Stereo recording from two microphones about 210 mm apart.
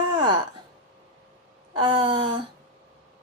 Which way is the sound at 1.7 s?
25° right (ahead or behind).